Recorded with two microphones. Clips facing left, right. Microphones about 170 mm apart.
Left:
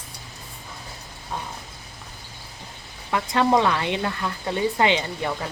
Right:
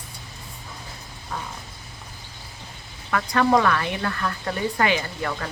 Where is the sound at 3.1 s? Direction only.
20° left (ahead or behind).